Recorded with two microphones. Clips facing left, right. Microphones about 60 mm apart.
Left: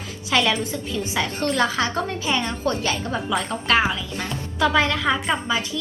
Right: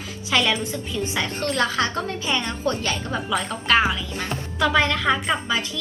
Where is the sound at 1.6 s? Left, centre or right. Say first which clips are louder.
Left 1 dB; centre.